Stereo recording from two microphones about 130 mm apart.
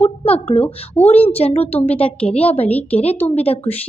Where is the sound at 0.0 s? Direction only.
50° left (ahead or behind).